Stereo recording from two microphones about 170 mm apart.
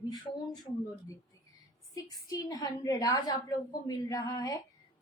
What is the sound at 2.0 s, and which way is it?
A woman's voice, 20° left (ahead or behind).